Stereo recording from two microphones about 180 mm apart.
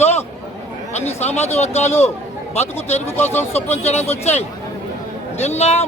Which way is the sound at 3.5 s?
35° left (ahead or behind).